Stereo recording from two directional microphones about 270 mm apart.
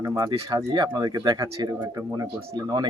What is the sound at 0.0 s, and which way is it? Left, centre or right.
Speech, centre.